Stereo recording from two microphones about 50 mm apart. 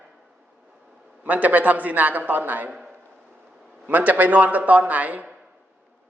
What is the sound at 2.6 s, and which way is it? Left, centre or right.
Speech, centre.